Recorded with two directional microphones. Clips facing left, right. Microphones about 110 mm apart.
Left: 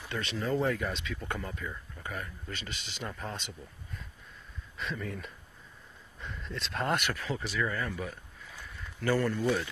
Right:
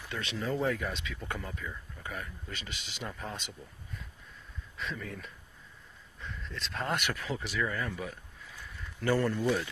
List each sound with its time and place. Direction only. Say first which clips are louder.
0.0 s speech: left 2 dB; 5° right (ahead or behind)
2.5 s speech: left 3 dB; 10° right (ahead or behind)
4.7 s speech: left 2 dB; 5° left (ahead or behind)
7.1 s a man's voice: left 1 dB; 10° right (ahead or behind)
9.0 s a man's voice: even; 15° right (ahead or behind)
9.4 s speech: even; centre (ahead or behind)